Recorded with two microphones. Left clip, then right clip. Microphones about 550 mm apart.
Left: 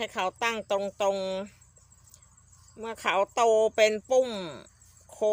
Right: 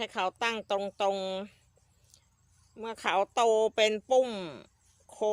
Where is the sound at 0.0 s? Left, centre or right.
Right.